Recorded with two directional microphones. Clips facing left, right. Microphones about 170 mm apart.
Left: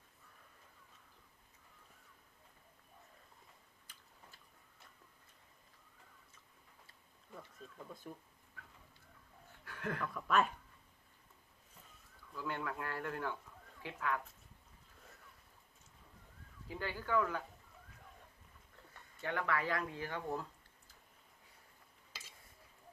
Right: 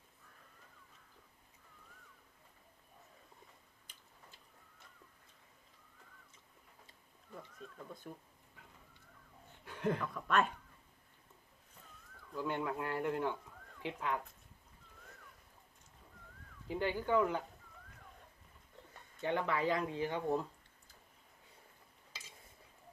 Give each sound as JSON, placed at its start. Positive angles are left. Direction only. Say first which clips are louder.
{"t": 3.9, "sound": "tick-tock", "louder": "left 1 dB", "side_deg": -20}
{"t": 7.9, "sound": "speech", "louder": "even", "side_deg": 0}
{"t": 9.6, "sound": "chuckle", "louder": "right 5 dB", "side_deg": -20}
{"t": 10.2, "sound": "speech", "louder": "left 3 dB", "side_deg": 0}
{"t": 12.3, "sound": "speech", "louder": "right 4 dB", "side_deg": -20}
{"t": 16.6, "sound": "speech", "louder": "right 6 dB", "side_deg": -20}
{"t": 19.2, "sound": "speech", "louder": "right 3 dB", "side_deg": -20}